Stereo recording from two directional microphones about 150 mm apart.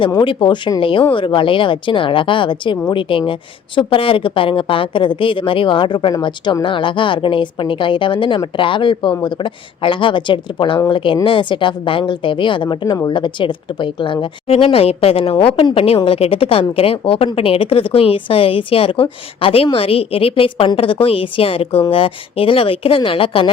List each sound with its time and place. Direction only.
0.0 s a woman's voice: 30° left (ahead or behind)